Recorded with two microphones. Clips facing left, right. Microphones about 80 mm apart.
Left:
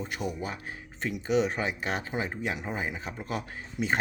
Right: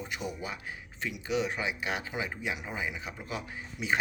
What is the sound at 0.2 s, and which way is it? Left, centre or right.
A man's voice, left.